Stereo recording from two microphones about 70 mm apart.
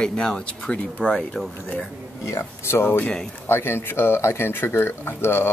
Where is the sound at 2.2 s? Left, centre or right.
Left.